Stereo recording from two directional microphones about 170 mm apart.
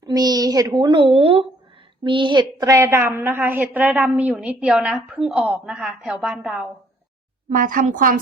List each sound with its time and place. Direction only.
0.0 s a woman's voice: 25° right (ahead or behind); by 6.7 s 5° right (ahead or behind)
7.5 s a woman's voice: 50° right (ahead or behind)